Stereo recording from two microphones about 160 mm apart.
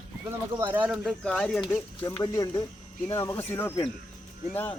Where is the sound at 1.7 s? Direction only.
20° left (ahead or behind).